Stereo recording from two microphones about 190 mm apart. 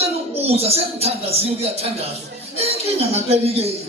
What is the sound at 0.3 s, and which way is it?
Speech, 35° right (ahead or behind).